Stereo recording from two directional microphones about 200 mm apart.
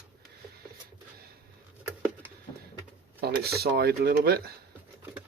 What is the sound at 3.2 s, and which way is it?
Speech, 50° right (ahead or behind).